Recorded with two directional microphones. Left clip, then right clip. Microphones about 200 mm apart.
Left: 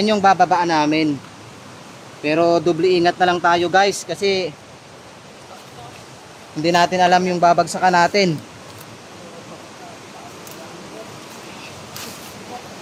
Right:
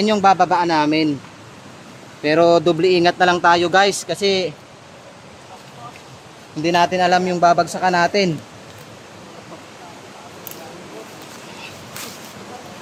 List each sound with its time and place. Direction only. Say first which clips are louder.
0.0 s speech: even; 5° right (ahead or behind)
2.2 s speech: right 2 dB; 20° right (ahead or behind)
6.6 s a man's voice: left 1 dB; centre (ahead or behind)